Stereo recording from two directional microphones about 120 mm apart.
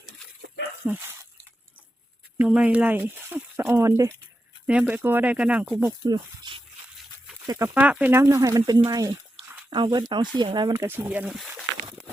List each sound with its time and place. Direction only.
0.9 s dog: 20° right (ahead or behind)
2.4 s speech: 10° right (ahead or behind); by 4.1 s 25° right (ahead or behind)
4.6 s speech: 10° right (ahead or behind)
6.1 s speech: 35° right (ahead or behind)
7.7 s speech: 10° right (ahead or behind)
8.2 s speech: 25° right (ahead or behind)
9.6 s speech: 40° right (ahead or behind)
10.8 s speech: 20° right (ahead or behind)